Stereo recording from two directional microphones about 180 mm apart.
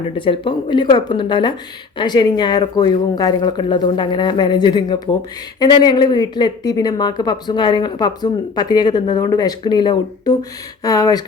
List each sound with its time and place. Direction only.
0.2 s speech: 30° left (ahead or behind)